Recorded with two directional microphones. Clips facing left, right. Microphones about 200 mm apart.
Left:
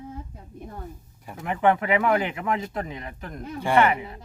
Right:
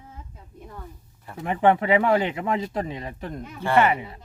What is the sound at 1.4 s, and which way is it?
Speech, 25° right (ahead or behind).